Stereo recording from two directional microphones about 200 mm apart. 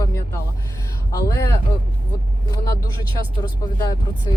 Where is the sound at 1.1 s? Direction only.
15° left (ahead or behind).